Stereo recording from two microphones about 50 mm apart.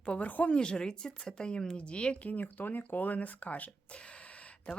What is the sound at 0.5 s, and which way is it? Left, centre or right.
Speech, centre.